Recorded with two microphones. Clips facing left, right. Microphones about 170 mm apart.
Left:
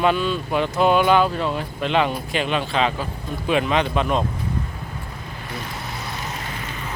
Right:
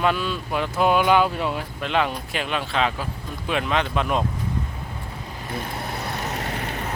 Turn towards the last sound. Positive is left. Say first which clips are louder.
# right 3 dB
turn(degrees=-60)  # may be behind; listen again after turning